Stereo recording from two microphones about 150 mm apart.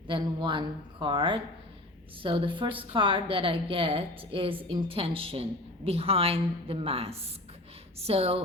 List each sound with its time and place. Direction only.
0.1 s a woman's voice: 30° right (ahead or behind)